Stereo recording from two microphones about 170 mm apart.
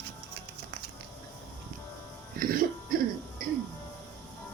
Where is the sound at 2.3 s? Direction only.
55° right (ahead or behind).